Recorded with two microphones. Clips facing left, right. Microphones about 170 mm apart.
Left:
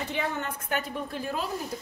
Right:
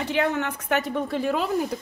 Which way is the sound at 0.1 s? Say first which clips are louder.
Right 10 dB; 80° right.